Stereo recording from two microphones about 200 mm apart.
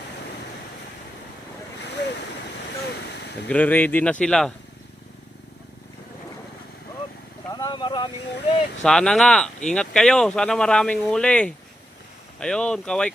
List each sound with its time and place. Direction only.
2.9 s a sound: 60° left (ahead or behind)
3.5 s speech: 10° left (ahead or behind)
7.4 s vehicle: 20° left (ahead or behind)
8.8 s speech: 5° left (ahead or behind)